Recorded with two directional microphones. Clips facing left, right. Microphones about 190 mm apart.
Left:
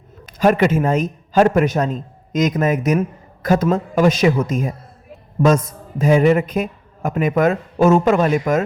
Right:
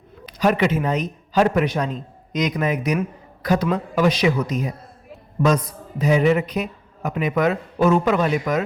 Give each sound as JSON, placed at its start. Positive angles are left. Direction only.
{"t": 0.3, "sound": "a man's voice", "side_deg": 45}